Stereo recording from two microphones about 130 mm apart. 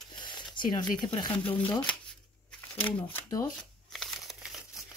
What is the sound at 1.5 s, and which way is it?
Shuffling cards, 10° left (ahead or behind).